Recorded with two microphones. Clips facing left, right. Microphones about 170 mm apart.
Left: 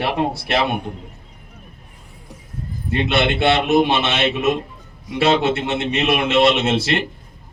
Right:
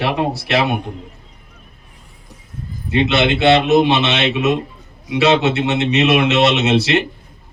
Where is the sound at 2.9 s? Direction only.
55° left (ahead or behind).